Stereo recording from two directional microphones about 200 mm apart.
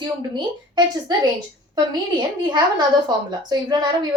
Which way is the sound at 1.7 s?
20° right (ahead or behind).